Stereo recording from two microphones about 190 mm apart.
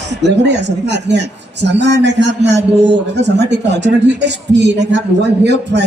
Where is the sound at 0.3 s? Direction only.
65° right (ahead or behind).